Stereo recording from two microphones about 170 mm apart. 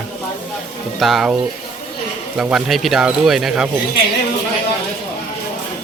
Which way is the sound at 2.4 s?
5° right (ahead or behind).